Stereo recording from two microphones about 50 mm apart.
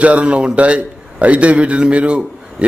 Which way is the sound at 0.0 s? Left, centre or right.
Right.